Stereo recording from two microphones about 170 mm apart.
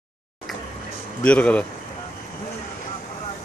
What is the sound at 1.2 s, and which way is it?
Speech, 5° left (ahead or behind).